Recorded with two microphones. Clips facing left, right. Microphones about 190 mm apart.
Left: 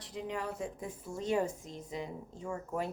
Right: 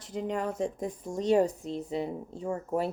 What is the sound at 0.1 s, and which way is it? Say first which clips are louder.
Speech: right 6 dB; 45° right (ahead or behind).